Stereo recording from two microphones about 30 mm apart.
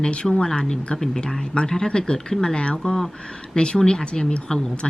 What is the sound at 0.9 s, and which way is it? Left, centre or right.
Speech, centre.